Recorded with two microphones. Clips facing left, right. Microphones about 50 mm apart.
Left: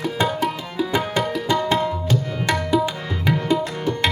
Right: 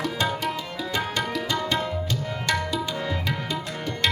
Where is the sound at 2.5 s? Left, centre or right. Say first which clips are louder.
Left 6 dB; centre.